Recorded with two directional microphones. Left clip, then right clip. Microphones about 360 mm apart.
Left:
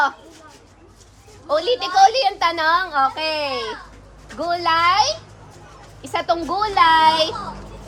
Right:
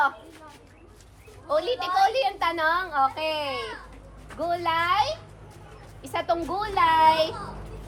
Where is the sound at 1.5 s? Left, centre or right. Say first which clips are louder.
Left 6 dB; left.